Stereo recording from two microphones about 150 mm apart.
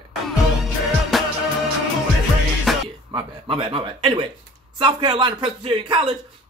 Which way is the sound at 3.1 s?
35° right (ahead or behind).